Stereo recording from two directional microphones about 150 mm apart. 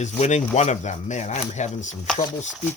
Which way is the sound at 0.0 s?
50° left (ahead or behind).